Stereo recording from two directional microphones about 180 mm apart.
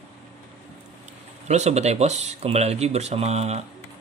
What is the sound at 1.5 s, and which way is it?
Speech, 40° right (ahead or behind).